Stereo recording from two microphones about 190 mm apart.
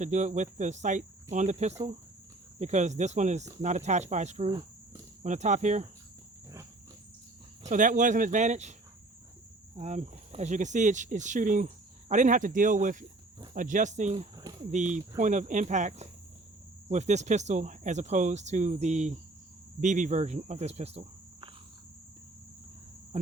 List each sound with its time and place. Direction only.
0.0 s speech: 40° right (ahead or behind)
7.6 s speech: 40° right (ahead or behind)
9.7 s speech: 40° right (ahead or behind)